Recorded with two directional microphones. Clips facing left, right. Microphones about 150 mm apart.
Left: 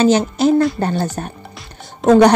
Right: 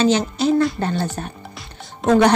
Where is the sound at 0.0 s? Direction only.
45° left (ahead or behind).